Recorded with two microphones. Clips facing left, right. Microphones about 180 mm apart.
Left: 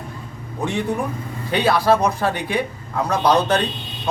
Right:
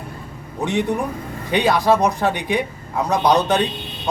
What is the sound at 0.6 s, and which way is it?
Speech, 15° right (ahead or behind).